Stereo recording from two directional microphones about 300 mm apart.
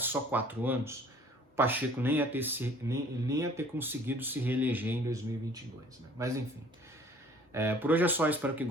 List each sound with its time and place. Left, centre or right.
0.0 s speech: centre
7.5 s speech: centre